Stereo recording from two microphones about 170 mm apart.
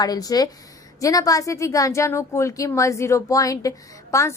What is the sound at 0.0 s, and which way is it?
Speech, 20° left (ahead or behind).